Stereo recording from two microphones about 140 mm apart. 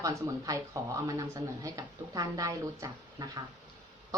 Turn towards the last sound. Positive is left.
turn(degrees=-25)  # may be behind; listen again after turning